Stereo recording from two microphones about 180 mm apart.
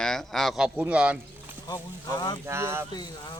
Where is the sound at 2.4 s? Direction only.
15° right (ahead or behind).